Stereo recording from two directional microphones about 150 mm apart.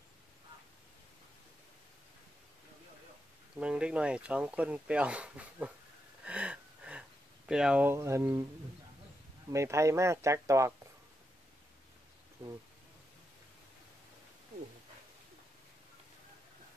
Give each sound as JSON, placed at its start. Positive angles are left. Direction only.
{"t": 3.5, "sound": "speech", "side_deg": -5}
{"t": 6.2, "sound": "a sound", "side_deg": -10}
{"t": 9.5, "sound": "speech", "side_deg": -20}
{"t": 12.4, "sound": "speech", "side_deg": -15}